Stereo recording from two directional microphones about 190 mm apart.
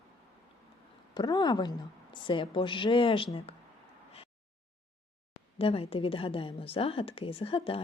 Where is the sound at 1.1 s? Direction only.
20° left (ahead or behind).